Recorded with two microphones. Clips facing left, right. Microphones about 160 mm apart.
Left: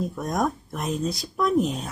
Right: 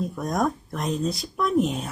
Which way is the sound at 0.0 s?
Centre (ahead or behind).